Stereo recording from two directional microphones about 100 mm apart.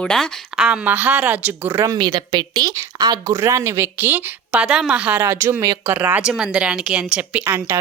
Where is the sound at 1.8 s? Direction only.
45° right (ahead or behind); by 7.4 s 10° right (ahead or behind).